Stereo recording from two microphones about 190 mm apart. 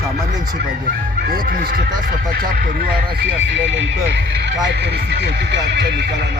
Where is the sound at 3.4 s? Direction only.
70° right (ahead or behind).